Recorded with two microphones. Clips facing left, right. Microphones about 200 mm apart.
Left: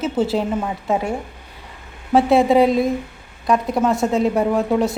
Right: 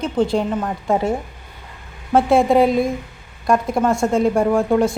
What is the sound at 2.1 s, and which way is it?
A woman's voice, centre (ahead or behind).